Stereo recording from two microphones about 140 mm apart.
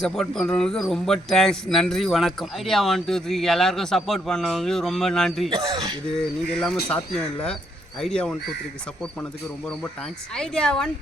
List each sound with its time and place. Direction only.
0.0 s speech: 5° left (ahead or behind)
5.5 s speech: 30° right (ahead or behind)
6.1 s speech: centre (ahead or behind)
8.0 s speech: 5° left (ahead or behind)
10.3 s speech: 5° left (ahead or behind)